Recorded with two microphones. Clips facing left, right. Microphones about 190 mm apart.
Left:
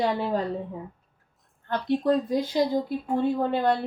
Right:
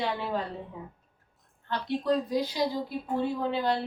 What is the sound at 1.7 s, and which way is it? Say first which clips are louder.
A woman's voice: left 4 dB; 50° left (ahead or behind).